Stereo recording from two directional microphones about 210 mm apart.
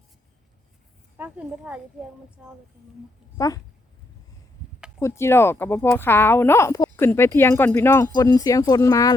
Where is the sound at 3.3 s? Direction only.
15° left (ahead or behind).